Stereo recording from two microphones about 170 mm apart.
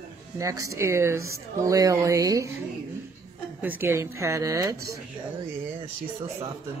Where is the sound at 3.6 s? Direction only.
10° right (ahead or behind).